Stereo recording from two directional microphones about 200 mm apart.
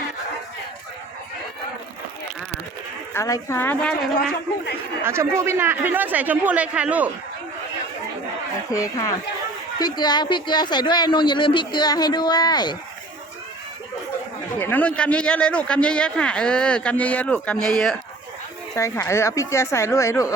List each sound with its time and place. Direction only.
3.1 s a woman's voice: 15° left (ahead or behind)
5.0 s speech: 15° right (ahead or behind)
8.7 s a woman's voice: 15° left (ahead or behind)
14.6 s speech: 10° left (ahead or behind)
18.7 s a woman's voice: 15° left (ahead or behind)